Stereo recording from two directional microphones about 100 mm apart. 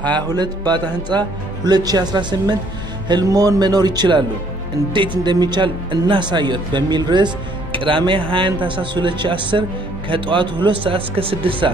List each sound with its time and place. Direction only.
0.4 s speech: 45° right (ahead or behind); by 11.7 s 65° right (ahead or behind)